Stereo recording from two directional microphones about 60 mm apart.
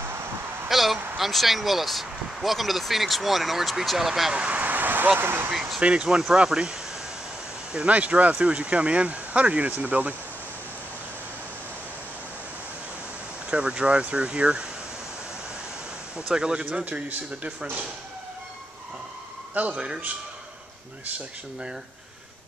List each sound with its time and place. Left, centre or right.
0.7 s speech: centre; by 5.5 s right
5.5 s speech: centre
5.8 s speech: centre
7.7 s speech: right
13.5 s speech: centre
16.3 s speech: centre
16.6 s speech: right
19.5 s speech: right